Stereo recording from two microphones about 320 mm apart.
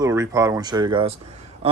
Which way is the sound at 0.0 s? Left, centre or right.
Centre.